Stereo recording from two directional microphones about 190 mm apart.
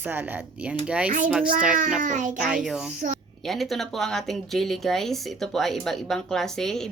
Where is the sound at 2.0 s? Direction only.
40° right (ahead or behind).